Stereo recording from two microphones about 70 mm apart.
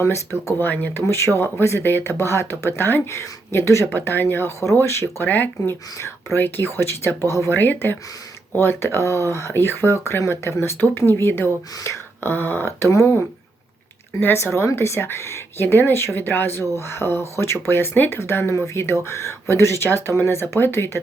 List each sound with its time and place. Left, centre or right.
0.6 s speech: left
1.0 s speech: left
5.3 s speech: left
7.6 s speech: left
14.2 s speech: left
15.6 s speech: left